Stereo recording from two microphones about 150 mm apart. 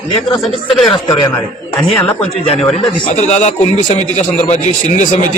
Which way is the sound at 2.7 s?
45° left (ahead or behind).